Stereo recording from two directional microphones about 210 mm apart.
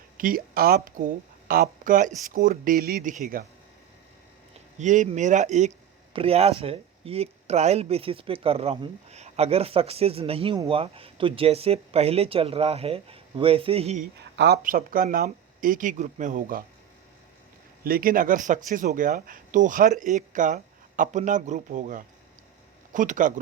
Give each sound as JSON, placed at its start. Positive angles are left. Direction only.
{"t": 0.2, "sound": "speech", "side_deg": -40}
{"t": 4.8, "sound": "speech", "side_deg": -35}
{"t": 14.0, "sound": "speech", "side_deg": -50}
{"t": 17.8, "sound": "speech", "side_deg": -45}